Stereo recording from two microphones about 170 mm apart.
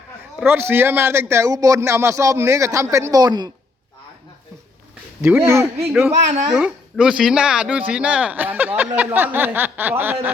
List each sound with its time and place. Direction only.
0.4 s speech: 15° right (ahead or behind)
5.2 s speech: 15° right (ahead or behind)